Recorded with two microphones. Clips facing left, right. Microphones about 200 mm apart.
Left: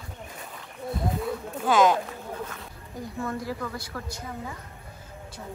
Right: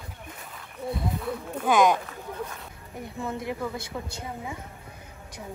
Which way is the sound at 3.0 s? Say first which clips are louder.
Even; 25° right (ahead or behind).